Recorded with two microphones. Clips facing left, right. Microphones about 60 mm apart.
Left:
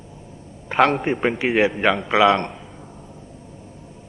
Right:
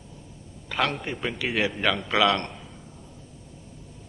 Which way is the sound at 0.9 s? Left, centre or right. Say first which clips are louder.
Left 10 dB; left.